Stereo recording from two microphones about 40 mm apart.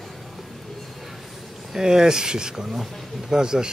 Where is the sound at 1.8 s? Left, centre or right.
Centre.